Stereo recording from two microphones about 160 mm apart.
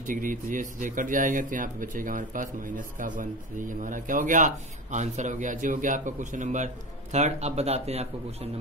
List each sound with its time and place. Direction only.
0.0 s speech: 55° right (ahead or behind)